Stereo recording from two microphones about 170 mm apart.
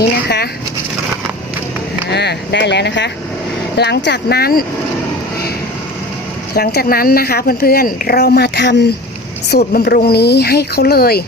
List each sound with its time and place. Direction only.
0.0 s speech: 70° left (ahead or behind)
2.0 s speech: 80° left
3.8 s speech: 80° left; by 4.6 s 65° left (ahead or behind)
6.5 s a woman's voice: 65° left (ahead or behind)
9.5 s speech: 65° left (ahead or behind)